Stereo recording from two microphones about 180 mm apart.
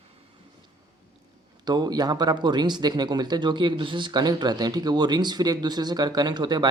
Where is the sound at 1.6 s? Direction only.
20° right (ahead or behind).